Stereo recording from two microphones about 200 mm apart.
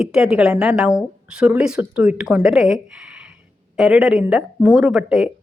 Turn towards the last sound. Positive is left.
turn(degrees=0)  # may be behind; listen again after turning